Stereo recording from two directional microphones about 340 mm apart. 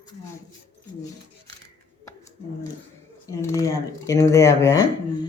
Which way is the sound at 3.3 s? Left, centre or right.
Centre.